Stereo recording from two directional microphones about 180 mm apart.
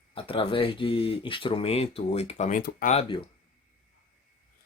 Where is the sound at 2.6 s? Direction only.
55° left (ahead or behind).